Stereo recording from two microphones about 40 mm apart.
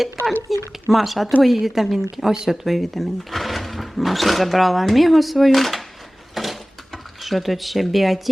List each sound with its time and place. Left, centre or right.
0.5 s a woman's voice: centre
2.6 s speech: centre
6.3 s mechanisms: centre